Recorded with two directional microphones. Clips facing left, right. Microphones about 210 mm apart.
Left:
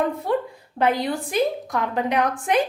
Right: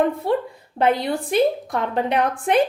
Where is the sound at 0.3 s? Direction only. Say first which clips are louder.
Right 2 dB; 25° right (ahead or behind).